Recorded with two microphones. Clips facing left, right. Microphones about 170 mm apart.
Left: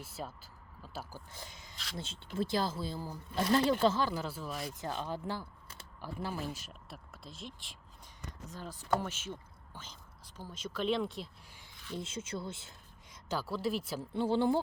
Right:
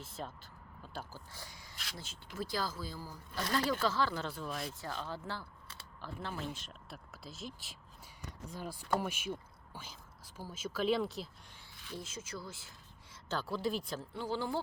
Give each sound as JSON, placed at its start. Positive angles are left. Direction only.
{"t": 0.0, "sound": "speech", "side_deg": 10}
{"t": 1.3, "sound": "speech", "side_deg": 20}
{"t": 4.1, "sound": "speech", "side_deg": 5}
{"t": 4.6, "sound": "speech", "side_deg": 20}
{"t": 11.9, "sound": "speech", "side_deg": 25}
{"t": 13.2, "sound": "speech", "side_deg": 5}
{"t": 14.1, "sound": "speech", "side_deg": 25}